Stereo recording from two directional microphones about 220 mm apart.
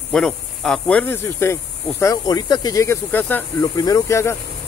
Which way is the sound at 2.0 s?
15° left (ahead or behind).